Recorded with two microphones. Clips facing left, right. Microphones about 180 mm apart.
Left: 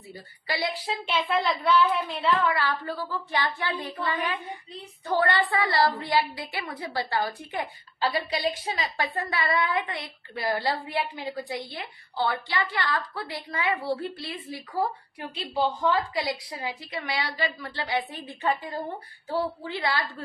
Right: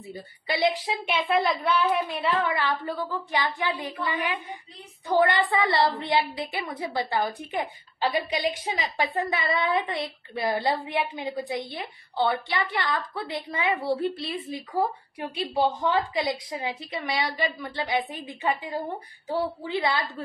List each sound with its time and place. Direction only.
0.1 s a woman's voice: 20° right (ahead or behind)